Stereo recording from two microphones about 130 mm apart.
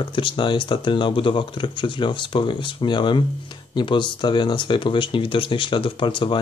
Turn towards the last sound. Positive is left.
turn(degrees=40)  # may be behind; listen again after turning